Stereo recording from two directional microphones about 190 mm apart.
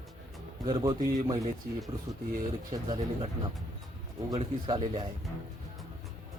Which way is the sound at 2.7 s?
20° right (ahead or behind).